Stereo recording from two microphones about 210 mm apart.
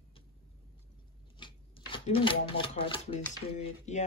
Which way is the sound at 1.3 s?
25° left (ahead or behind).